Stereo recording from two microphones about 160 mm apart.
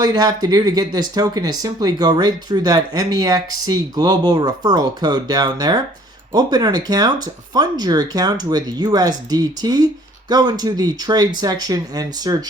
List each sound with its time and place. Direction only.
0.0 s speech: 25° right (ahead or behind)